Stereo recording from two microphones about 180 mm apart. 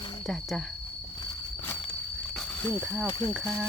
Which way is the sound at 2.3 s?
5° left (ahead or behind).